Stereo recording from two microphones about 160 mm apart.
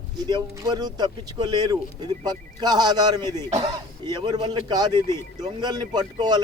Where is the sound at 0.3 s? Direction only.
25° right (ahead or behind).